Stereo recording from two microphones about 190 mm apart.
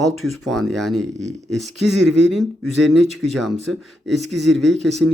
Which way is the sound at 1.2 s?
35° right (ahead or behind).